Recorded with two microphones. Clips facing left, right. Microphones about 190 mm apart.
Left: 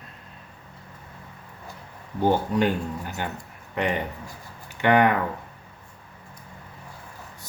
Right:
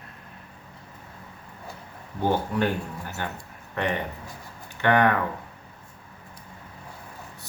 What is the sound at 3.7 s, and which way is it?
Speech, 15° left (ahead or behind).